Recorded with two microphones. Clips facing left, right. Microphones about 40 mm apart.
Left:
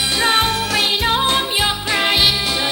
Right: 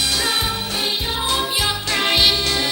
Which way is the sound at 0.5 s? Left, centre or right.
Left.